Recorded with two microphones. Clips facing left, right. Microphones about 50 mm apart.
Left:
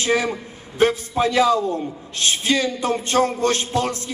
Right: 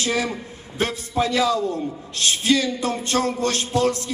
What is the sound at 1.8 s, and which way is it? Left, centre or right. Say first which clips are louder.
Music: even; left.